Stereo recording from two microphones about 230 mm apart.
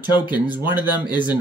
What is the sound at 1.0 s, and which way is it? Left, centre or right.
Speech, centre.